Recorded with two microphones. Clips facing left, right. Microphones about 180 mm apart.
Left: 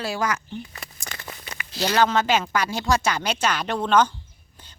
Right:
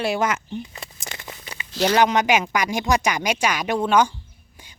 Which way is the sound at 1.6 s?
15° right (ahead or behind).